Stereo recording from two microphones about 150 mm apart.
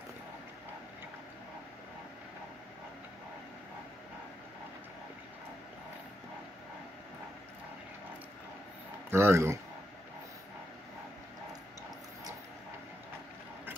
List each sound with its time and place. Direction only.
9.1 s speech: 15° right (ahead or behind)